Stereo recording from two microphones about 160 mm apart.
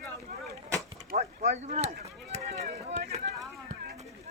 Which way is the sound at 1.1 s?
45° right (ahead or behind).